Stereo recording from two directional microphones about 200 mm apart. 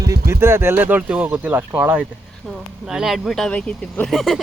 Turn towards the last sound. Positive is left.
turn(degrees=0)  # may be behind; listen again after turning